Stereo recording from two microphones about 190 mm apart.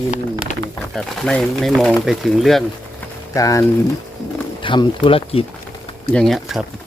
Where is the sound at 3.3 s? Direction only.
15° left (ahead or behind).